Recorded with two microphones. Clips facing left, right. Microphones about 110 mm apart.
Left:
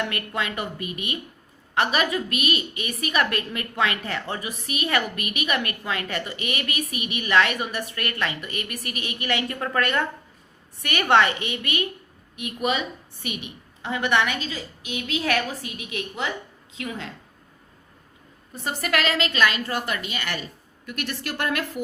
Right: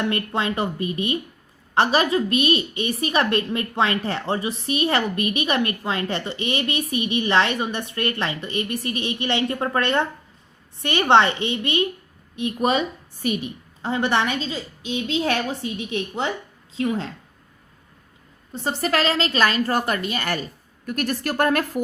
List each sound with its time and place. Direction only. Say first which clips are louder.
0.0 s a woman's voice: right 4 dB; 30° right (ahead or behind)
18.5 s a woman's voice: right 3 dB; 30° right (ahead or behind)